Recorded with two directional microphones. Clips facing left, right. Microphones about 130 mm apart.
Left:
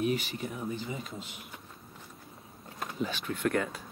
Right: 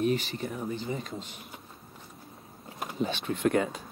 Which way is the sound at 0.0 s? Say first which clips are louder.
Right 3 dB; 10° left (ahead or behind).